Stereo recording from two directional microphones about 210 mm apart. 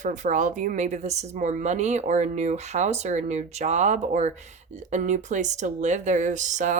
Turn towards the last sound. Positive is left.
turn(degrees=-35)  # may be behind; listen again after turning